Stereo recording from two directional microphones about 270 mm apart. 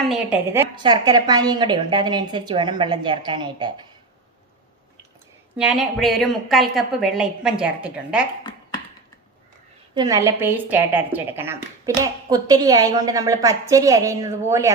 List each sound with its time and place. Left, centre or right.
0.1 s a woman's voice: centre
5.5 s a woman's voice: centre
9.9 s a woman's voice: centre